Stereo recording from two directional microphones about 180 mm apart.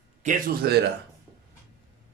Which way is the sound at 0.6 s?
65° right (ahead or behind).